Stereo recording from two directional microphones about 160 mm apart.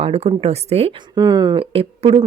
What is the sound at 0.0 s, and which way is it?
Speech, 40° right (ahead or behind).